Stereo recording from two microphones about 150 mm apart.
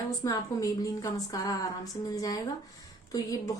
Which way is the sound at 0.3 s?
25° left (ahead or behind).